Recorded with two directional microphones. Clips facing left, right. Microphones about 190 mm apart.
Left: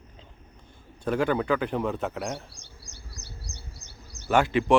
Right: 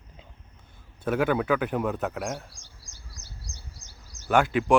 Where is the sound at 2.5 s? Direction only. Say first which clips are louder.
Left 4 dB; 65° left (ahead or behind).